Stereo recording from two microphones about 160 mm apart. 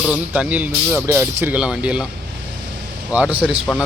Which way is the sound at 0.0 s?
5° right (ahead or behind).